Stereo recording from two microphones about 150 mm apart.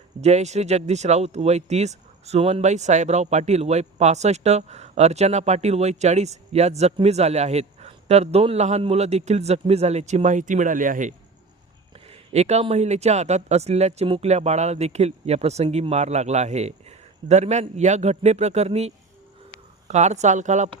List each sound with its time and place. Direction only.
0.2 s speech: 50° right (ahead or behind)
11.9 s speech: 40° right (ahead or behind)